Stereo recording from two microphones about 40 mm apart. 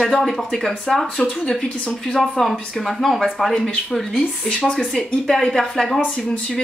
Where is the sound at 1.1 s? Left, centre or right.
Left.